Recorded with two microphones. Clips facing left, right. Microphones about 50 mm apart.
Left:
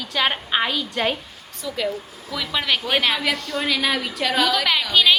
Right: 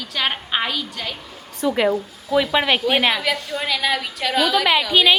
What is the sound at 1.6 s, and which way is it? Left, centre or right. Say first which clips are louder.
Speech: right 10 dB; right.